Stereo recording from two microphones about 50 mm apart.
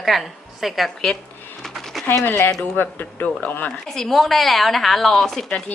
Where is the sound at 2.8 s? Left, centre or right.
Left.